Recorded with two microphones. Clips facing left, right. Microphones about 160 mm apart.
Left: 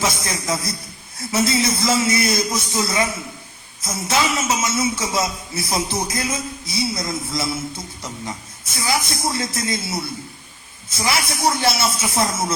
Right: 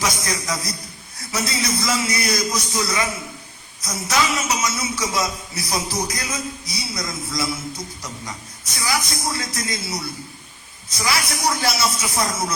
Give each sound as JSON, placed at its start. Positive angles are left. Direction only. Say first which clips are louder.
{"t": 0.0, "sound": "a man's voice", "louder": "left 1 dB", "side_deg": 25}